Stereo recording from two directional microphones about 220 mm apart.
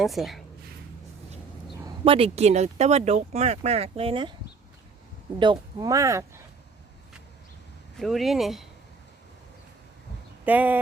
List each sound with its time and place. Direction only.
0.0 s speech: centre (ahead or behind)
1.8 s speech: 25° right (ahead or behind)
5.4 s speech: 20° right (ahead or behind)
7.9 s speech: centre (ahead or behind)
10.4 s speech: 5° right (ahead or behind)